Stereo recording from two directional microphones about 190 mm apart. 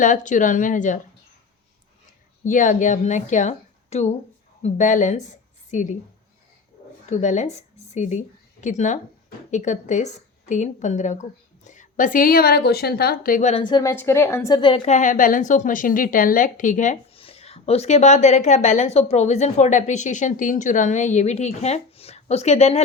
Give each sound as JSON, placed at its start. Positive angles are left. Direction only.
{"t": 0.0, "sound": "speech", "side_deg": 40}
{"t": 2.4, "sound": "a woman's voice", "side_deg": 40}
{"t": 7.1, "sound": "a woman's voice", "side_deg": 40}
{"t": 13.9, "sound": "a woman's voice", "side_deg": 10}
{"t": 14.8, "sound": "a woman's voice", "side_deg": 40}